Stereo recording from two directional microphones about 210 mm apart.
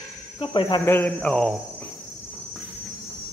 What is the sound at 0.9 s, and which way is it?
Speech, 5° left (ahead or behind).